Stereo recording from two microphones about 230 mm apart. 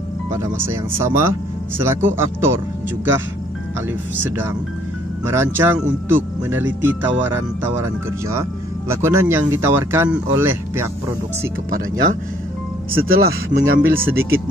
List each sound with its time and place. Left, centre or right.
1.0 s speech: centre
5.2 s speech: centre
11.7 s speech: right